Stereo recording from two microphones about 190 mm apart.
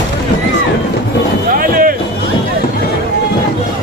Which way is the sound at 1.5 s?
45° right (ahead or behind).